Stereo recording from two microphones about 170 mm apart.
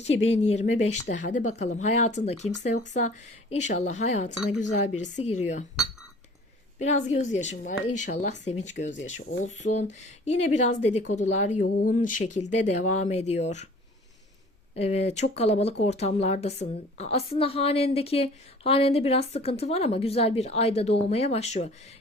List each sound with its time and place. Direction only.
0.0 s a woman's voice: 40° left (ahead or behind)
6.7 s a woman's voice: 45° left (ahead or behind)
14.8 s a woman's voice: 40° left (ahead or behind)